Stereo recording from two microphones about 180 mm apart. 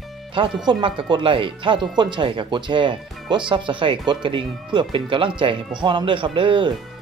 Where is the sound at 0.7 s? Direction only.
25° right (ahead or behind).